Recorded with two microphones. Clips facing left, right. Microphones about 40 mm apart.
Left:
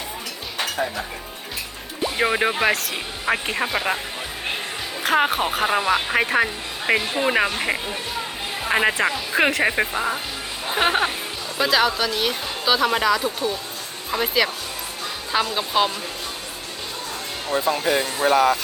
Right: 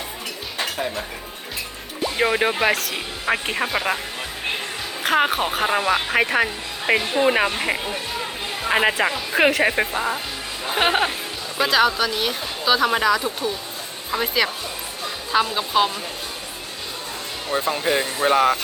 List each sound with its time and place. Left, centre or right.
2.0 s speech: centre
5.0 s speech: centre
10.8 s speech: centre
17.7 s speech: centre
18.3 s speech: right